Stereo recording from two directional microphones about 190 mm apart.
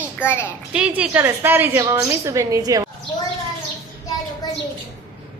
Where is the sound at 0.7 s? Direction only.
5° right (ahead or behind).